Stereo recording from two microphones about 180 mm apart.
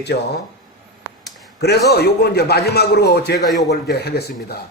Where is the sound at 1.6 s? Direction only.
65° left (ahead or behind).